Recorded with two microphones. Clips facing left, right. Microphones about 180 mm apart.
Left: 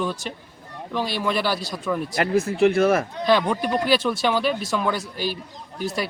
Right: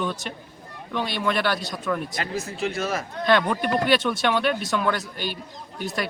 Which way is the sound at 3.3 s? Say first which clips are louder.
Left 1 dB; 5° left (ahead or behind).